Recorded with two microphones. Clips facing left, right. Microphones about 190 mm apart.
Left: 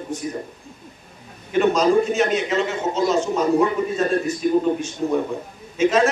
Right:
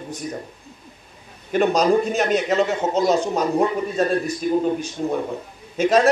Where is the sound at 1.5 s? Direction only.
40° right (ahead or behind).